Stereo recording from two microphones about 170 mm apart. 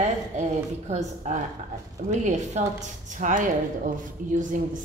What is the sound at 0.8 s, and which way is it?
A woman's voice, 40° right (ahead or behind).